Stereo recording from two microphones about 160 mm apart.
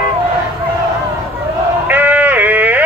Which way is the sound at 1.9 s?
10° right (ahead or behind).